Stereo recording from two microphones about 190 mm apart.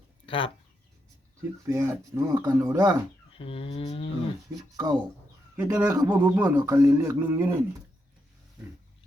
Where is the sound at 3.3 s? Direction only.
30° left (ahead or behind).